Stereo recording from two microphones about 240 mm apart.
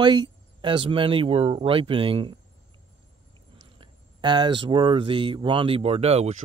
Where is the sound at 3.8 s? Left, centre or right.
Centre.